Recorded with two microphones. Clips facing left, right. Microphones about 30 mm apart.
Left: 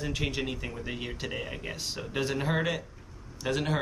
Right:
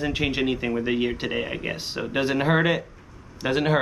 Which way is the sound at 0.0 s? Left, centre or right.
Right.